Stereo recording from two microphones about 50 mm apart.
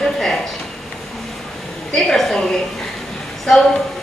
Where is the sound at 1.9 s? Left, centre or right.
Centre.